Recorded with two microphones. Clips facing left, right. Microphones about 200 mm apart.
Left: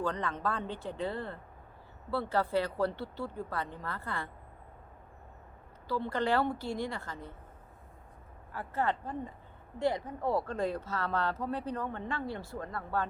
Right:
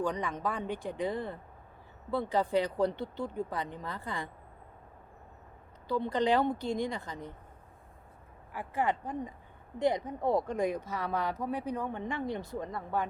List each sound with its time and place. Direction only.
0.0 s speech: 15° right (ahead or behind)
5.9 s speech: 15° right (ahead or behind)
8.5 s speech: 15° right (ahead or behind)